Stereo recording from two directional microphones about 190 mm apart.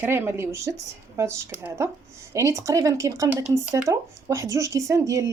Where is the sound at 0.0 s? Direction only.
10° right (ahead or behind).